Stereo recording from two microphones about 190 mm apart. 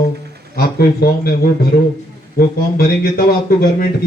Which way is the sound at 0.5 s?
55° left (ahead or behind).